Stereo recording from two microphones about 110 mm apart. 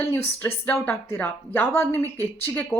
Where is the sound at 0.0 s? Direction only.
20° left (ahead or behind).